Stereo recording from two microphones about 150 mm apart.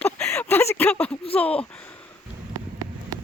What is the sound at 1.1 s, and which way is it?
Speech, 40° left (ahead or behind).